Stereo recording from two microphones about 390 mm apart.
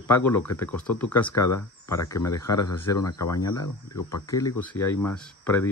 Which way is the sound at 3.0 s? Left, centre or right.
Left.